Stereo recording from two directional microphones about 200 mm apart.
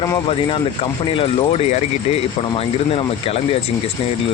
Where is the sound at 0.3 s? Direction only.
25° left (ahead or behind).